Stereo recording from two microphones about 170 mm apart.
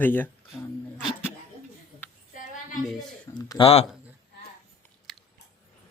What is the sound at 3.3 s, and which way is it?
Speech, 30° left (ahead or behind).